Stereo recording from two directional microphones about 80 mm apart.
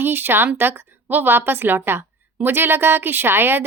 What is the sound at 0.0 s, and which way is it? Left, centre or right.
A woman's voice, right.